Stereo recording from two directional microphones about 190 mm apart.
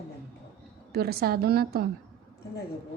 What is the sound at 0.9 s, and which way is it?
Speech, 55° right (ahead or behind).